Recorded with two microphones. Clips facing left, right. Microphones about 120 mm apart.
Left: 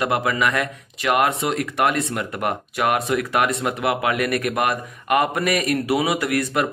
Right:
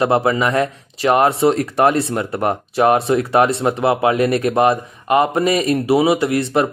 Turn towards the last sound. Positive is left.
turn(degrees=-25)  # may be behind; listen again after turning